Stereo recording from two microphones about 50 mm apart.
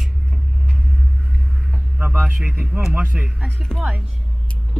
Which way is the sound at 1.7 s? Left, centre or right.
Right.